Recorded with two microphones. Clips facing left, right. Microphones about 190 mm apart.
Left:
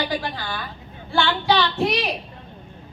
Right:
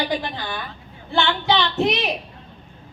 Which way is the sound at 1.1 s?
20° right (ahead or behind).